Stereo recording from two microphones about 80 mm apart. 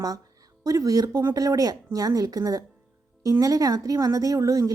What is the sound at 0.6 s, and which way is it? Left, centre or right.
A woman's voice, right.